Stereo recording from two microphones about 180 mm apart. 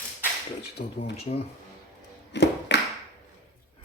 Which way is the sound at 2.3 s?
75° left (ahead or behind).